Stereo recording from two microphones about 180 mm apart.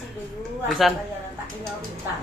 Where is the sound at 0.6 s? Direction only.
Centre (ahead or behind).